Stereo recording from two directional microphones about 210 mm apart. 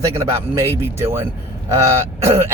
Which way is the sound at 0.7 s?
10° right (ahead or behind).